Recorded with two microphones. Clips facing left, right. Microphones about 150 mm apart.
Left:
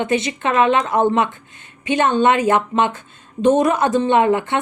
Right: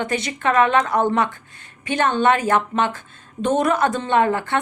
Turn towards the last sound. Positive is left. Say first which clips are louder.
# left 3 dB
turn(degrees=20)  # may be behind; listen again after turning